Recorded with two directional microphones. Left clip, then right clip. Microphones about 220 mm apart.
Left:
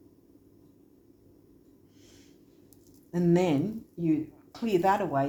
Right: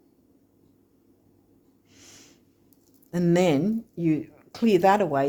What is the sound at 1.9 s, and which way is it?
Snort, 50° right (ahead or behind).